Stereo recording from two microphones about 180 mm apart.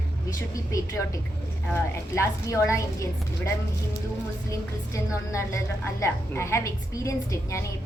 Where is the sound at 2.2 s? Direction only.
15° left (ahead or behind).